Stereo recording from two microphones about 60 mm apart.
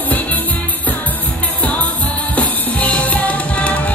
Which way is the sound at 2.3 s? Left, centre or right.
Left.